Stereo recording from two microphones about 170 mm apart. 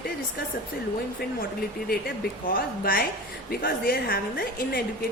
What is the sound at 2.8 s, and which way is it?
Speech, 60° left (ahead or behind).